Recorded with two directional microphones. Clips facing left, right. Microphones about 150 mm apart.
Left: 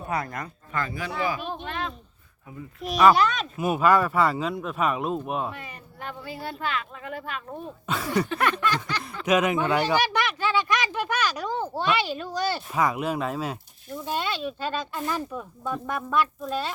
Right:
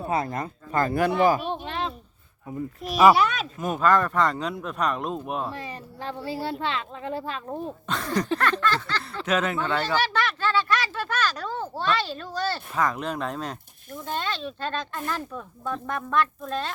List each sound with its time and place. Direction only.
0.1 s speech: 25° right (ahead or behind)
1.6 s a sound: 30° right (ahead or behind)
3.1 s speech: 5° right (ahead or behind)
3.6 s speech: 10° left (ahead or behind)
5.5 s speech: 30° right (ahead or behind)
7.9 s speech: 10° left (ahead or behind)